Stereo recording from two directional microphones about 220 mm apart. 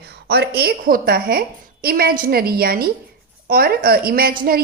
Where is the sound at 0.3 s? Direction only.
45° right (ahead or behind).